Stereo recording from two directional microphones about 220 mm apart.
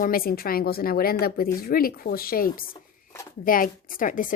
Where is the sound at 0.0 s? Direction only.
40° left (ahead or behind).